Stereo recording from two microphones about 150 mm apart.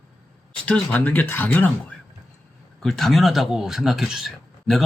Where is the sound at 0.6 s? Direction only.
10° left (ahead or behind).